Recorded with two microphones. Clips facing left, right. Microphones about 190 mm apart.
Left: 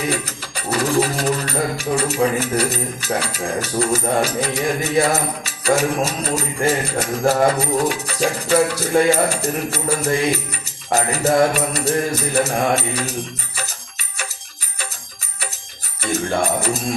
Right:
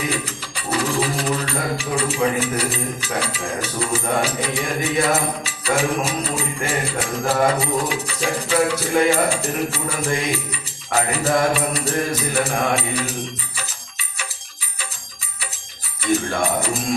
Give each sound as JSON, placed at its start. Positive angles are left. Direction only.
{"t": 0.1, "sound": "music", "side_deg": 45}
{"t": 16.1, "sound": "music", "side_deg": 40}